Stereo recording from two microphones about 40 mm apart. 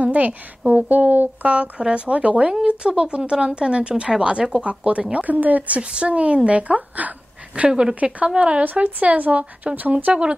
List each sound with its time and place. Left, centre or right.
0.0 s speech: right
5.1 s speech: right
5.8 s speech: right